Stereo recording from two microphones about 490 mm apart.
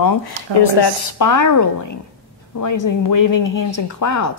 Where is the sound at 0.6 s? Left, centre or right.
Left.